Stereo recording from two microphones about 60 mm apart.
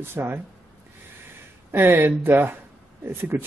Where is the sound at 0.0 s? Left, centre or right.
Right.